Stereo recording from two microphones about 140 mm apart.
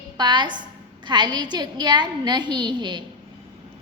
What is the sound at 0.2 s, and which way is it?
A woman's voice, 35° right (ahead or behind).